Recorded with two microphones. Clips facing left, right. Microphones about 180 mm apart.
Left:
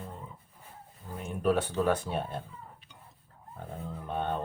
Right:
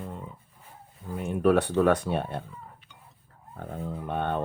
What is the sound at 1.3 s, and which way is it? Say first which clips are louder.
Speech: right 5 dB; 65° right (ahead or behind).